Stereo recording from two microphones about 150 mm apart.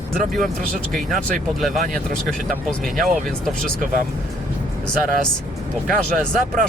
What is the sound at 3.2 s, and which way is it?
Speech, 5° left (ahead or behind).